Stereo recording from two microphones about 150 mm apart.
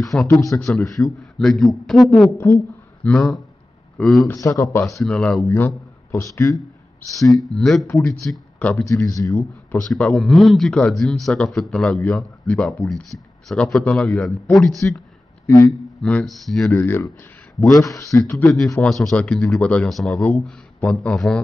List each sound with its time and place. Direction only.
0.0 s a man's voice: centre (ahead or behind)
0.3 s a man's voice: 20° left (ahead or behind)
0.7 s a man's voice: centre (ahead or behind)
2.3 s speech: 15° left (ahead or behind)
3.1 s a man's voice: centre (ahead or behind)
4.3 s a man's voice: 20° left (ahead or behind)
4.8 s a man's voice: 5° left (ahead or behind)
6.1 s a man's voice: 20° left (ahead or behind)
7.2 s a man's voice: centre (ahead or behind)
8.8 s a man's voice: 20° left (ahead or behind)
9.7 s a man's voice: 5° left (ahead or behind)
16.0 s a man's voice: 5° left (ahead or behind)
16.7 s a man's voice: 15° left (ahead or behind)